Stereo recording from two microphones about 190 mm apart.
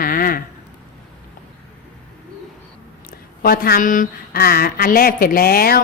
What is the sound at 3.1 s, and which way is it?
Speech, 50° left (ahead or behind).